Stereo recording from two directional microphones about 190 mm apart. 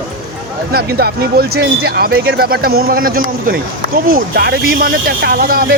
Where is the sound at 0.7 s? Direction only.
55° right (ahead or behind).